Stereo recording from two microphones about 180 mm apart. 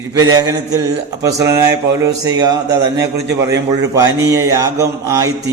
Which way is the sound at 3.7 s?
20° right (ahead or behind).